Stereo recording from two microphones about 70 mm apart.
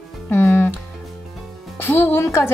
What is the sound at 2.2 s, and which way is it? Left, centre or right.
Speech, left.